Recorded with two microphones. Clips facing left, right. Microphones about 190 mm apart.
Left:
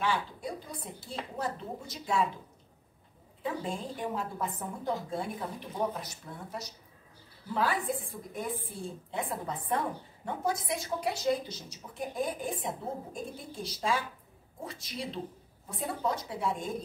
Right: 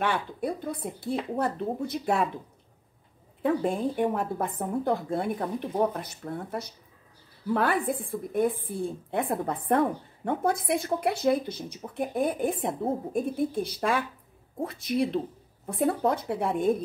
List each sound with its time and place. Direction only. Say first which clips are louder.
0.0 s a woman's voice: right 4 dB; 60° right (ahead or behind)
3.4 s a woman's voice: right 9 dB; 60° right (ahead or behind)
7.9 s a woman's voice: right 4 dB; 60° right (ahead or behind)
9.1 s a woman's voice: right 6 dB; 60° right (ahead or behind)